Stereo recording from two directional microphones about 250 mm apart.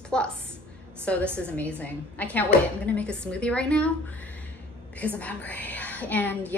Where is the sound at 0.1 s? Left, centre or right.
Centre.